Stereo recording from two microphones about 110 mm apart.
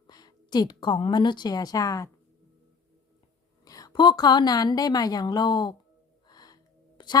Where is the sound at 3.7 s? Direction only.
35° left (ahead or behind).